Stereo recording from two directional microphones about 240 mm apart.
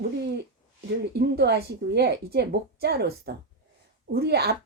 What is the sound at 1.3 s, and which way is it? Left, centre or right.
A woman's voice, right.